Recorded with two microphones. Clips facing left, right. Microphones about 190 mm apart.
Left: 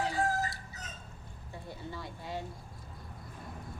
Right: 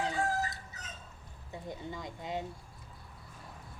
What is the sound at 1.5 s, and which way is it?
Speech, 15° right (ahead or behind).